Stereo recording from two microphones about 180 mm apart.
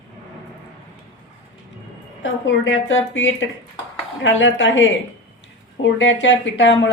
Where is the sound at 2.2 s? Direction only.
90° left.